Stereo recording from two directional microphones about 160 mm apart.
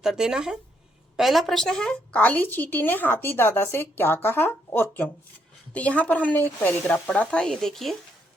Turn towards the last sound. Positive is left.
turn(degrees=0)  # may be behind; listen again after turning